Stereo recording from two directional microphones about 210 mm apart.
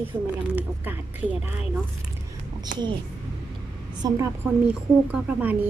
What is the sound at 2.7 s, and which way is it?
Speech, 40° right (ahead or behind).